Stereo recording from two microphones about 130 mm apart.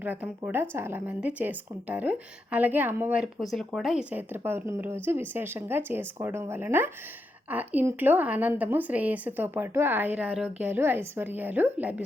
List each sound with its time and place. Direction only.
0.0 s speech: 15° right (ahead or behind)
3.5 s speech: centre (ahead or behind)
4.1 s speech: 15° right (ahead or behind)